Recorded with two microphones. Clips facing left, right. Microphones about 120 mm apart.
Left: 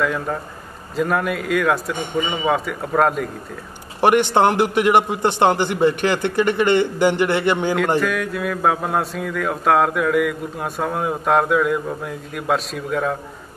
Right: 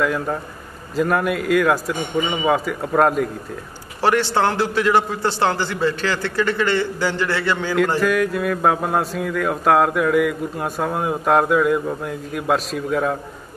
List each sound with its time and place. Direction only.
0.0 s speech: centre (ahead or behind)
4.0 s a man's voice: 20° left (ahead or behind)
8.0 s speech: centre (ahead or behind)